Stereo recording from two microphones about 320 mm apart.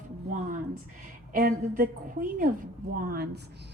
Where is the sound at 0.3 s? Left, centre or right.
Right.